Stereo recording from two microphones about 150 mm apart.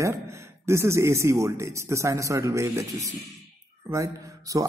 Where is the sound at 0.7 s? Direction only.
20° right (ahead or behind).